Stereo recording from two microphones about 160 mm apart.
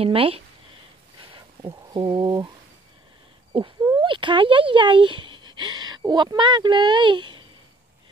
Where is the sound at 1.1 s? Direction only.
30° right (ahead or behind).